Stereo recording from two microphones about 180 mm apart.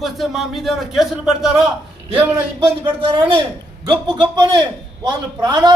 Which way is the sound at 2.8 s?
25° right (ahead or behind).